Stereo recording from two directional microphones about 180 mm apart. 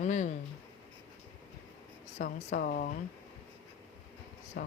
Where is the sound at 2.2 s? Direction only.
50° left (ahead or behind).